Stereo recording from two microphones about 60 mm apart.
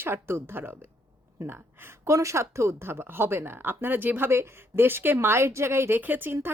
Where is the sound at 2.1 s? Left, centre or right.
Right.